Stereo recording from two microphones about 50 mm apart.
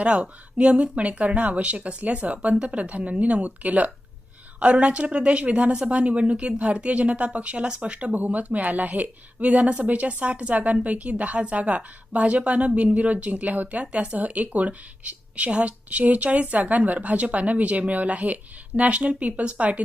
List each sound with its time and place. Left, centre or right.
0.0 s a woman's voice: right